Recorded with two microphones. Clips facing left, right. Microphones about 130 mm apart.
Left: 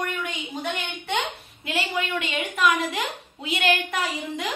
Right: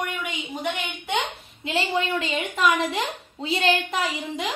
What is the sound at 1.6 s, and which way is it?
A woman's voice, 30° right (ahead or behind).